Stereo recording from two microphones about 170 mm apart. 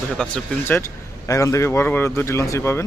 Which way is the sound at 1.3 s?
20° left (ahead or behind).